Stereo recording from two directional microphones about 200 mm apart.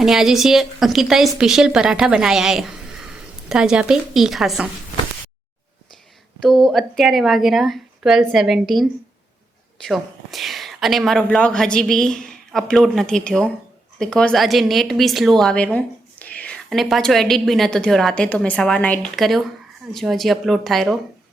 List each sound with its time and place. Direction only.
0.0 s a woman's voice: centre (ahead or behind)
6.6 s a woman's voice: centre (ahead or behind)